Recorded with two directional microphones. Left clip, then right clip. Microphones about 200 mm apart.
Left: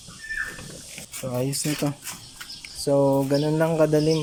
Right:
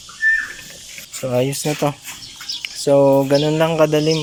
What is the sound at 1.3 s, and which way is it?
Speech, centre (ahead or behind).